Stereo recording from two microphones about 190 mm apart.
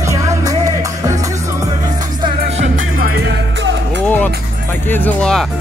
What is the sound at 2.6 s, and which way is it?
Music, 45° right (ahead or behind).